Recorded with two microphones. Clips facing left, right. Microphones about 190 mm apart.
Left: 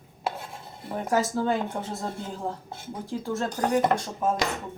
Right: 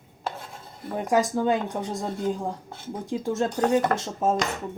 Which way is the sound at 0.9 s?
15° right (ahead or behind).